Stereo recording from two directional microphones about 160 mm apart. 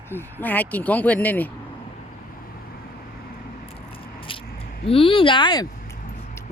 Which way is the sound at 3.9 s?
35° left (ahead or behind).